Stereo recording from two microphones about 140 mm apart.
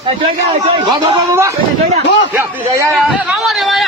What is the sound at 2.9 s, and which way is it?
Speech, 5° right (ahead or behind).